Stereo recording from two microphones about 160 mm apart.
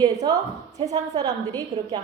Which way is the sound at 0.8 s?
45° right (ahead or behind).